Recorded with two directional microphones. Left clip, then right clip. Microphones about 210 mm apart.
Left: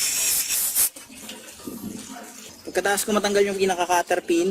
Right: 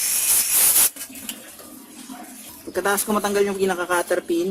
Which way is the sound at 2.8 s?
Centre (ahead or behind).